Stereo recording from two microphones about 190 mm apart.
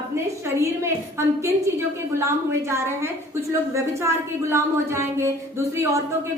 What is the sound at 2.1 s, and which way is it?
A woman's voice, 15° right (ahead or behind).